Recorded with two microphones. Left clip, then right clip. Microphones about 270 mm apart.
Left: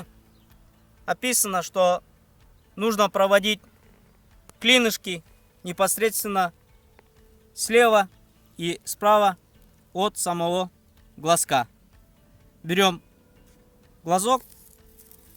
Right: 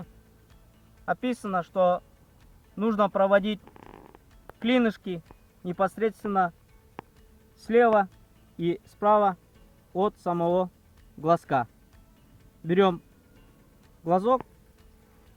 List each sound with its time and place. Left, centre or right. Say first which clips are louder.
1.0 s speech: left 4 dB; centre
4.6 s speech: left 6 dB; centre
7.6 s speech: left 3 dB; centre
14.0 s speech: left 2 dB; centre